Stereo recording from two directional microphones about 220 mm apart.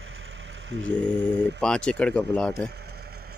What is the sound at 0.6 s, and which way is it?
Mantra, 55° right (ahead or behind).